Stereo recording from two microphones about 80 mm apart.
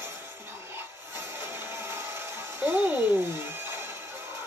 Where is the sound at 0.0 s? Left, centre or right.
Right.